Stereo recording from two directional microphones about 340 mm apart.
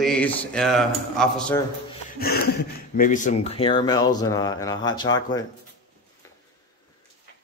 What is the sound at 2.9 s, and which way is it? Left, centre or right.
Speech, left.